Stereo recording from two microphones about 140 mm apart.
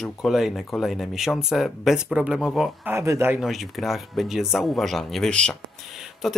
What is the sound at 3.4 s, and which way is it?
Speech, centre (ahead or behind).